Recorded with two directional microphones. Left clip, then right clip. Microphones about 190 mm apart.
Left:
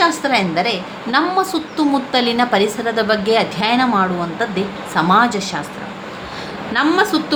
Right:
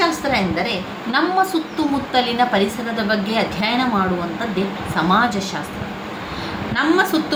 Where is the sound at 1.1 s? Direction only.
55° left (ahead or behind).